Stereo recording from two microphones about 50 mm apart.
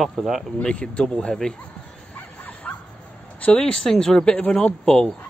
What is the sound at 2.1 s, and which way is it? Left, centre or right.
Dog, left.